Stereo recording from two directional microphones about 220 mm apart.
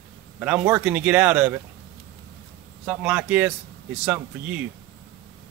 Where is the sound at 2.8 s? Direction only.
5° right (ahead or behind).